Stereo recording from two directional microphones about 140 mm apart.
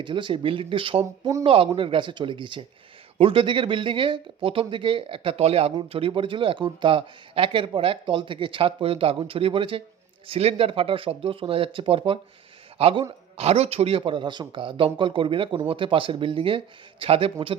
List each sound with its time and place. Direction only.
0.0 s speech: 35° right (ahead or behind)
13.3 s speech: 50° right (ahead or behind)